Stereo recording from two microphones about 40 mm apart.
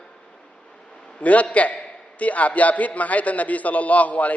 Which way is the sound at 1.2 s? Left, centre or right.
Left.